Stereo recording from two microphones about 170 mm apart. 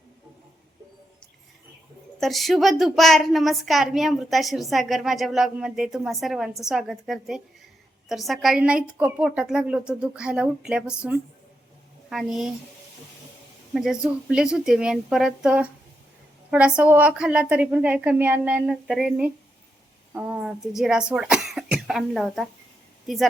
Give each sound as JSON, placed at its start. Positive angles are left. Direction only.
{"t": 2.2, "sound": "a woman's voice", "side_deg": 0}
{"t": 13.7, "sound": "a woman's voice", "side_deg": -5}